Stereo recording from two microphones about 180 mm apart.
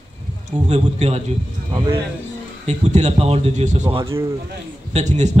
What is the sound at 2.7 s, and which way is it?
A man's voice, 40° right (ahead or behind).